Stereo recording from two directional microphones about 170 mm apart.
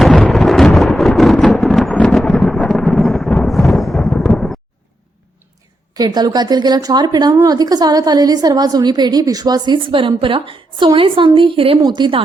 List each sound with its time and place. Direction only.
0.0 s thunder: 5° left (ahead or behind)
5.9 s speech: 25° right (ahead or behind)